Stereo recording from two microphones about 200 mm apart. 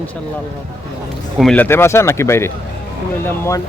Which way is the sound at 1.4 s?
5° left (ahead or behind).